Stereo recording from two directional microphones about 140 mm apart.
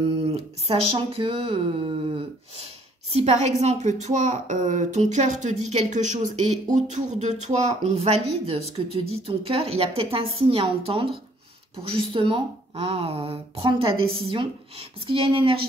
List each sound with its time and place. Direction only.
0.3 s a woman's voice: 45° right (ahead or behind)
12.1 s speech: 35° right (ahead or behind)